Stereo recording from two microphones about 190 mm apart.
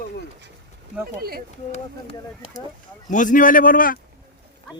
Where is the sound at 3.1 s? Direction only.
40° left (ahead or behind).